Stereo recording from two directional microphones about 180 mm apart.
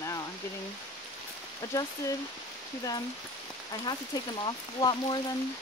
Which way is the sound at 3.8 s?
25° left (ahead or behind).